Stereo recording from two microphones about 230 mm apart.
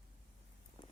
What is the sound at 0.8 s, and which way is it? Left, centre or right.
Walk, left.